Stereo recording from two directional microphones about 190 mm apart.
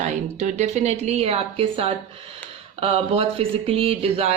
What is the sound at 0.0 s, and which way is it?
Speech, 35° right (ahead or behind).